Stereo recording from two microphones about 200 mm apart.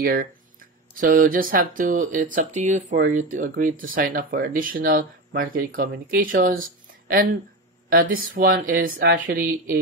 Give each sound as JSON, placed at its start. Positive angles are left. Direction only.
{"t": 0.0, "sound": "speech", "side_deg": -45}